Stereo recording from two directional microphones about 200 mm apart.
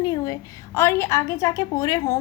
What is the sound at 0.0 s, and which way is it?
A woman's voice, 20° left (ahead or behind).